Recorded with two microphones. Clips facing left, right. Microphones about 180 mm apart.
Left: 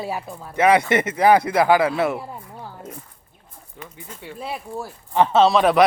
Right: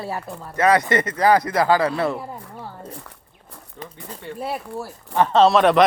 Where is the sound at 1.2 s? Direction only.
20° left (ahead or behind).